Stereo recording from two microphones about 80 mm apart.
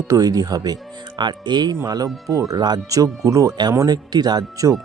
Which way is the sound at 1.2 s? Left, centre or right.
Right.